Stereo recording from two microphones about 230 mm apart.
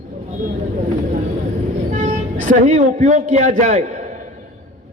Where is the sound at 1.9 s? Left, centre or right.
Right.